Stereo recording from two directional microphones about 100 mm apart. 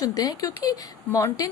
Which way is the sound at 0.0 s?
35° left (ahead or behind).